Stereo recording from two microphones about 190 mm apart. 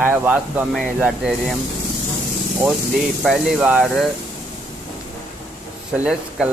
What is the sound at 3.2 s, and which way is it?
Speech, 5° right (ahead or behind).